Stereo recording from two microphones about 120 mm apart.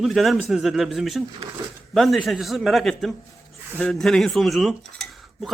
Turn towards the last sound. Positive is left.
turn(degrees=0)  # may be behind; listen again after turning